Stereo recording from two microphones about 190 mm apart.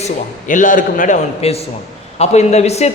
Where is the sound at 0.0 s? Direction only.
45° left (ahead or behind).